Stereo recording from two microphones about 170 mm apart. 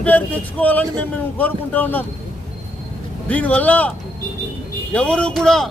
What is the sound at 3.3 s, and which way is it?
Speech, 10° left (ahead or behind).